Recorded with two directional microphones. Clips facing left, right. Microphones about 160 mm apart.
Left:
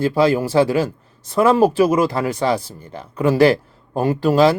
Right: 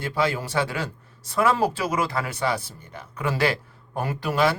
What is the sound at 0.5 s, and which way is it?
Speech, 25° left (ahead or behind).